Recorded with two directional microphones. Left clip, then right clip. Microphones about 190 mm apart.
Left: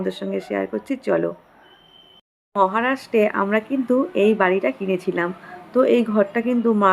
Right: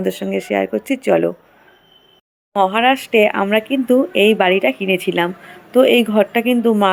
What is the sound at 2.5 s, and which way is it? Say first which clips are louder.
A woman's voice: right 5 dB; 10° right (ahead or behind).